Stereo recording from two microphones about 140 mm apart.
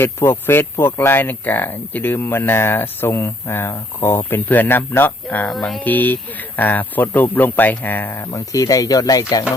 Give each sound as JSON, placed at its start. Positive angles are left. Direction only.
{"t": 0.0, "sound": "speech", "side_deg": 15}